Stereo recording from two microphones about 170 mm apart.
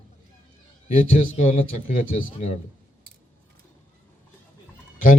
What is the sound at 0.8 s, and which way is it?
A man's voice, 50° left (ahead or behind).